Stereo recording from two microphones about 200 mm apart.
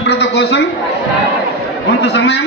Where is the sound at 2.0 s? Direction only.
60° left (ahead or behind).